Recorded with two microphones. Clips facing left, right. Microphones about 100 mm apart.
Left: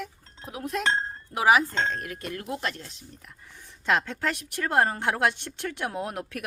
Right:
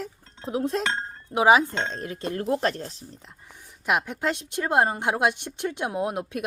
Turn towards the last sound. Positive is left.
turn(degrees=-20)  # may be behind; listen again after turning